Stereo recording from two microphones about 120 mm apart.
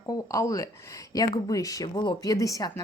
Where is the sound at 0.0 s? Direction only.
25° left (ahead or behind).